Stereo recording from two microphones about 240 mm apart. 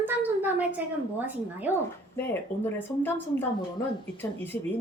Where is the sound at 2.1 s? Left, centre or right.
Centre.